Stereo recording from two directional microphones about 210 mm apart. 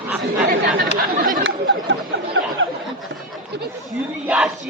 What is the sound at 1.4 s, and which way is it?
Chatter, 60° right (ahead or behind).